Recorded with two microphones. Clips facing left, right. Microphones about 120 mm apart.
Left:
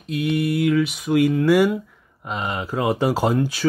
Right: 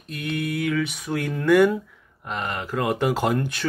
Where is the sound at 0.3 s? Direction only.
5° left (ahead or behind).